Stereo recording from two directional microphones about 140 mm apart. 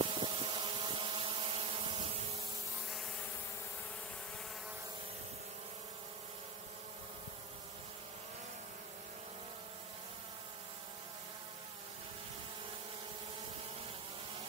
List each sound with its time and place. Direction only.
0.0 s vehicle: 35° right (ahead or behind)